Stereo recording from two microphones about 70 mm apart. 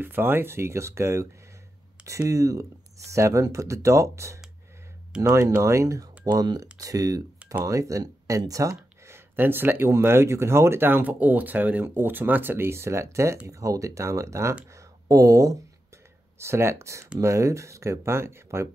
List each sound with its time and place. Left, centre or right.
0.0 s speech: right
6.3 s speech: right
9.1 s speech: right
16.3 s speech: right